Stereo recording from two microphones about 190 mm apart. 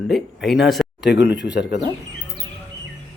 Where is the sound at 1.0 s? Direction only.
65° left (ahead or behind).